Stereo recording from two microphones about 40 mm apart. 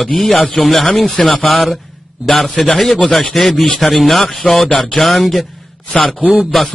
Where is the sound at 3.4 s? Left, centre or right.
Centre.